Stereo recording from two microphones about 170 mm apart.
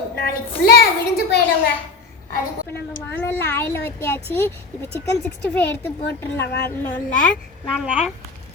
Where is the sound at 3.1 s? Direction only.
15° left (ahead or behind).